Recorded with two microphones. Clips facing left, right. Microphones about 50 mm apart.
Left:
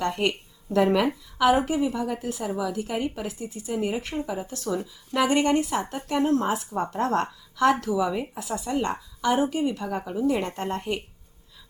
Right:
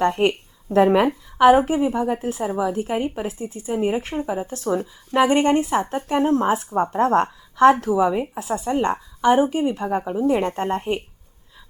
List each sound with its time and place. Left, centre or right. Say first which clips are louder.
0.0 s a woman's voice: right 7 dB; right